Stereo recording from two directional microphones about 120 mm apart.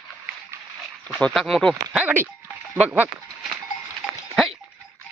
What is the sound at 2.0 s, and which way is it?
Speech, 20° right (ahead or behind).